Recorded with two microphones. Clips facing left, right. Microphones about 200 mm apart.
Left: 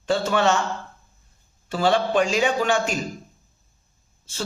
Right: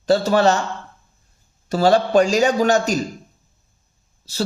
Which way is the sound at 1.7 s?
40° right (ahead or behind).